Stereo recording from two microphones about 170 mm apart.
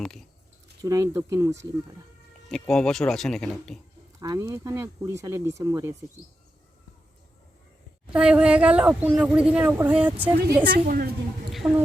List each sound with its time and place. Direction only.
0.8 s speech: 20° right (ahead or behind)
2.5 s speech: 5° left (ahead or behind)
4.2 s speech: 20° right (ahead or behind)
8.1 s speech: 5° right (ahead or behind)
10.7 s a woman's voice: 55° right (ahead or behind)
11.6 s speech: 15° right (ahead or behind)